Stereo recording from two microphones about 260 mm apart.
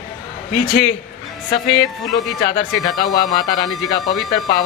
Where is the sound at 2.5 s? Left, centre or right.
Centre.